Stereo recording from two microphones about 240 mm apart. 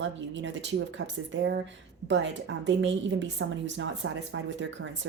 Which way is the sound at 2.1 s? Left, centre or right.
Right.